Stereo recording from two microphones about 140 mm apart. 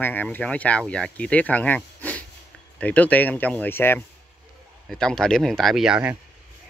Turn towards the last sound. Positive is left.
turn(degrees=-10)  # may be behind; listen again after turning